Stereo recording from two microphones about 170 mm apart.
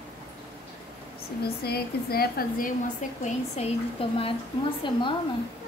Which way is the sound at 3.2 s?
35° left (ahead or behind).